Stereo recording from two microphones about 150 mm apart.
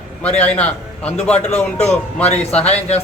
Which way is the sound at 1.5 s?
45° left (ahead or behind).